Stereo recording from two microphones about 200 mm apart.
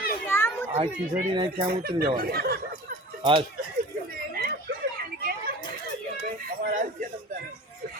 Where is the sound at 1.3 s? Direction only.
25° right (ahead or behind).